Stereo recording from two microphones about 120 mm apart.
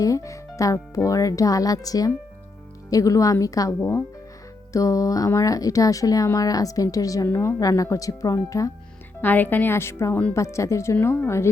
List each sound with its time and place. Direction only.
0.0 s speech: 25° left (ahead or behind)
9.2 s speech: 15° left (ahead or behind)